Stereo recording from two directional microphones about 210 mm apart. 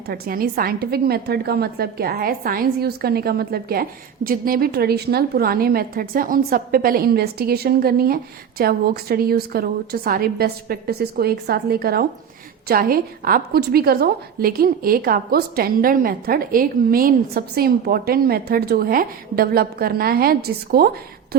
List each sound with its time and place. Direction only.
0.1 s a woman's voice: 45° right (ahead or behind)